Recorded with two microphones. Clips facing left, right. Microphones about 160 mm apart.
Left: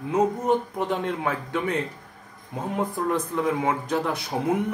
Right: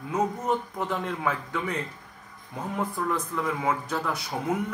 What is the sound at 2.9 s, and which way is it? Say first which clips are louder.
Speech: left 4 dB; 30° left (ahead or behind).